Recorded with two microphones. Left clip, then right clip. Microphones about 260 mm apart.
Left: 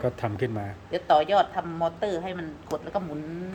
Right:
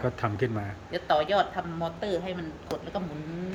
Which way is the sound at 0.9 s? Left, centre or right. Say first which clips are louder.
Left 4 dB; left.